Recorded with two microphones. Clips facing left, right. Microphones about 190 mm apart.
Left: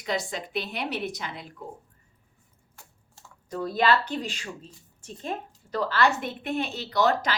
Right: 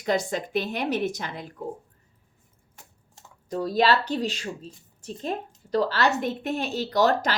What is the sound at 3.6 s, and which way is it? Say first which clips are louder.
Speech: right 2 dB; 40° right (ahead or behind).